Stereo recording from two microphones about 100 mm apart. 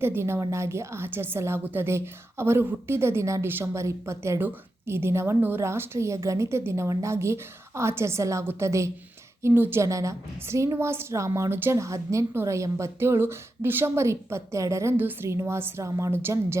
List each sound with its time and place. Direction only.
0.0 s a woman's voice: 25° right (ahead or behind)